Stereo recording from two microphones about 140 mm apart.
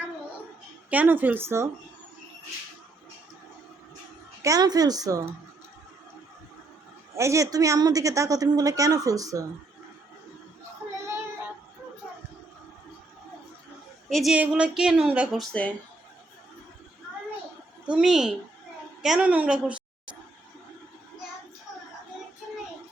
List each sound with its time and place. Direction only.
0.9 s speech: 10° right (ahead or behind)
4.4 s a woman's voice: 25° right (ahead or behind)
7.2 s a woman's voice: 20° right (ahead or behind)
14.1 s a woman's voice: centre (ahead or behind)
17.8 s a woman's voice: 5° right (ahead or behind)